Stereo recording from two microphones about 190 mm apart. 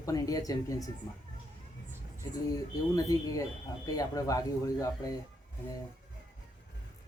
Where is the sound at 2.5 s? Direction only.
20° left (ahead or behind).